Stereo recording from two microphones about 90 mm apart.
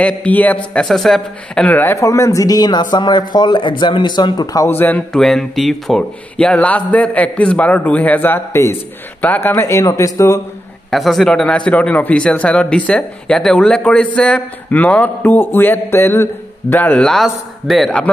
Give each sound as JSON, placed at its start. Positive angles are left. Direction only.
{"t": 0.0, "sound": "a man's voice", "side_deg": 15}
{"t": 0.8, "sound": "speech", "side_deg": 5}
{"t": 2.0, "sound": "speech", "side_deg": 35}
{"t": 4.6, "sound": "speech", "side_deg": 20}
{"t": 5.1, "sound": "a man's voice", "side_deg": 5}
{"t": 10.9, "sound": "a man's voice", "side_deg": 0}
{"t": 17.0, "sound": "speech", "side_deg": 0}